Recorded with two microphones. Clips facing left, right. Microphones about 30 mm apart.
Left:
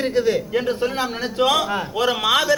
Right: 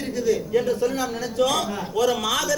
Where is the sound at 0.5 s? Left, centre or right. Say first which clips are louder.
Even; left.